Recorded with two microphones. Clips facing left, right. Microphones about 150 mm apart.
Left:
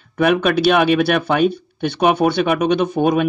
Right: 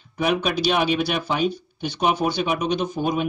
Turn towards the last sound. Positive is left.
turn(degrees=60)  # may be behind; listen again after turning